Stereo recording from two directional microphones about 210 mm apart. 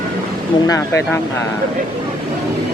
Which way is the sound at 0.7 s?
15° left (ahead or behind).